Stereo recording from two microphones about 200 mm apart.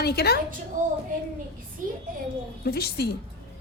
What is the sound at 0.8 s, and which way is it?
Speech, 40° right (ahead or behind).